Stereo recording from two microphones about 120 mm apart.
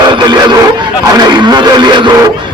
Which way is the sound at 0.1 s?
35° right (ahead or behind).